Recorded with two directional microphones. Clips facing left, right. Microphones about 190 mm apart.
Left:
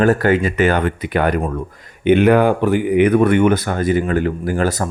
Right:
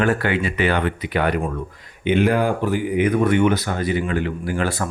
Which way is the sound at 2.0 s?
60° left (ahead or behind).